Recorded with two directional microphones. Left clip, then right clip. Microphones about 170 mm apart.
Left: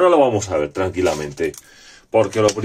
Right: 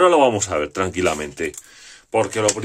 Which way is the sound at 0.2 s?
40° right (ahead or behind).